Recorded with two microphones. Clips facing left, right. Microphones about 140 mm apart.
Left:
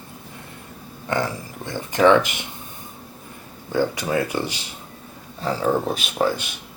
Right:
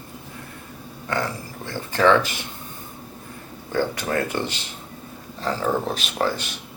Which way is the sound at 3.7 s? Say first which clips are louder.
Left 2 dB; 15° left (ahead or behind).